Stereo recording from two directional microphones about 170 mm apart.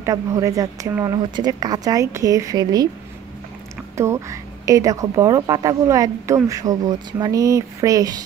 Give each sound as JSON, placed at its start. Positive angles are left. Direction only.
{"t": 0.0, "sound": "speech", "side_deg": -20}
{"t": 3.9, "sound": "speech", "side_deg": -15}